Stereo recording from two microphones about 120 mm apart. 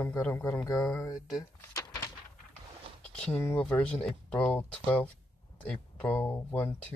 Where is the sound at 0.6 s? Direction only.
30° left (ahead or behind).